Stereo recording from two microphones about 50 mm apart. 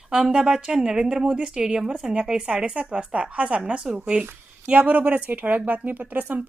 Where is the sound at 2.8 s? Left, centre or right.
Right.